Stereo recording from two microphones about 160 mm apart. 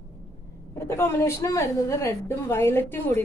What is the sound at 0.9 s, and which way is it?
A woman's voice, 15° left (ahead or behind).